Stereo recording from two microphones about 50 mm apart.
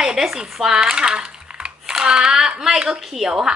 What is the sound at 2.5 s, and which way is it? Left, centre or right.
Speech, centre.